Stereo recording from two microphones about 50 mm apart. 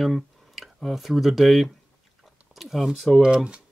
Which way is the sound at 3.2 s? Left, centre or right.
Centre.